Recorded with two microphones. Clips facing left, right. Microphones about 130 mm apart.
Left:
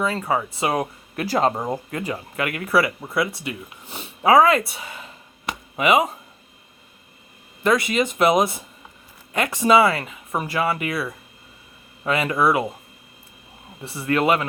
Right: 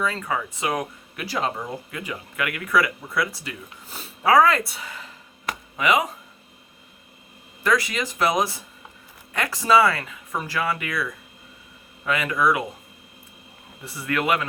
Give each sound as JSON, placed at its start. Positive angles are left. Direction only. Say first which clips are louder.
{"t": 0.0, "sound": "speech", "louder": "left 3 dB", "side_deg": 30}
{"t": 7.6, "sound": "speech", "louder": "left 4 dB", "side_deg": 25}
{"t": 13.8, "sound": "speech", "louder": "left 5 dB", "side_deg": 25}